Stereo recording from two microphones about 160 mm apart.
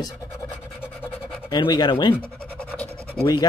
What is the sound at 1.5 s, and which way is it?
Speech, 25° left (ahead or behind).